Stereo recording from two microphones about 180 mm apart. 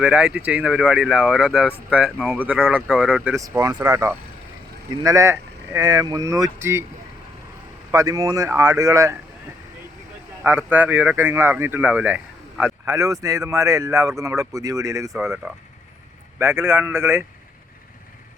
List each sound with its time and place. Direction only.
0.0 s speech: 5° right (ahead or behind)
3.3 s speech: 20° right (ahead or behind)
7.9 s speech: 20° right (ahead or behind)
10.4 s speech: 10° right (ahead or behind)